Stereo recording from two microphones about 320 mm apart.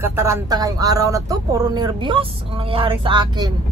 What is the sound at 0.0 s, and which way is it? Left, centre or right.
Speech, centre.